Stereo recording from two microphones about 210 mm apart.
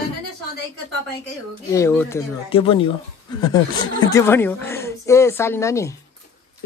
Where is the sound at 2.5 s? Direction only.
25° left (ahead or behind).